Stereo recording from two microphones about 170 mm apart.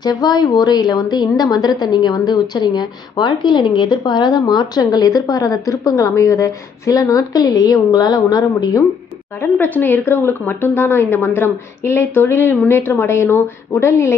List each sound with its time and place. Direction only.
0.0 s a woman's voice: 25° left (ahead or behind)
9.4 s speech: 10° left (ahead or behind)